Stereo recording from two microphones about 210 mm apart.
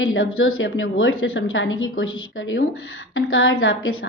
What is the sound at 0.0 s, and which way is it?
A woman's voice, 75° left (ahead or behind).